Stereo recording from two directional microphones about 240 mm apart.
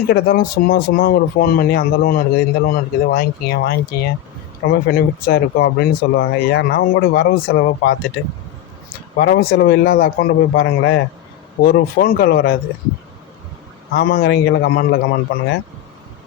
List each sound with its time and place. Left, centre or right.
0.1 s speech: left
9.1 s speech: left
13.9 s speech: left